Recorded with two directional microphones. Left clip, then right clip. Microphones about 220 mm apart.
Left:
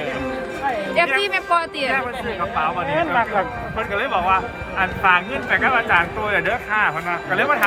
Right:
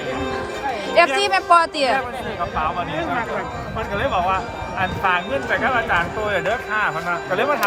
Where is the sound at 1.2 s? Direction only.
10° right (ahead or behind).